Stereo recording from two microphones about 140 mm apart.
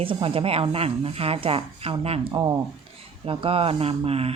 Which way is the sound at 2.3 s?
30° right (ahead or behind).